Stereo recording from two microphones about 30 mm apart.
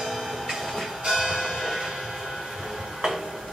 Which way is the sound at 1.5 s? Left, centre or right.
Centre.